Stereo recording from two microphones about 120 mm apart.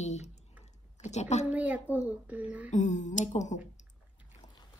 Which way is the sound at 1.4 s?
10° right (ahead or behind).